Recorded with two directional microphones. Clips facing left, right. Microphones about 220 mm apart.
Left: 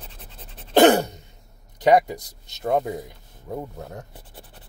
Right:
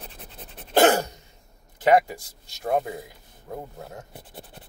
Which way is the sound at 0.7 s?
20° left (ahead or behind).